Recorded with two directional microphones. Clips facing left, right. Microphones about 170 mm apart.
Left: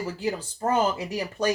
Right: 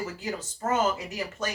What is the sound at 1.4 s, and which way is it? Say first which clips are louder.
Speech: left 9 dB; 35° left (ahead or behind).